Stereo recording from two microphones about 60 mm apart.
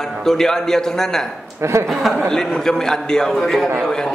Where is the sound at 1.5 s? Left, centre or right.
Right.